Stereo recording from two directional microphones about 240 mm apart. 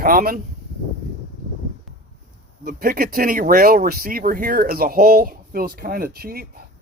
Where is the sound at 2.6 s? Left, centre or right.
Right.